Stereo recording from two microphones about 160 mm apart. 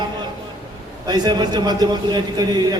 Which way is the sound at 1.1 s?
25° right (ahead or behind).